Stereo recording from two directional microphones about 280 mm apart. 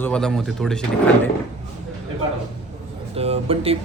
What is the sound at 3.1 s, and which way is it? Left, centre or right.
Speech, right.